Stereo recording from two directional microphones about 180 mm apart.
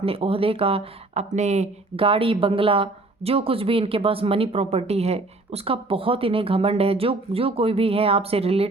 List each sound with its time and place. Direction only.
0.0 s speech: 30° right (ahead or behind)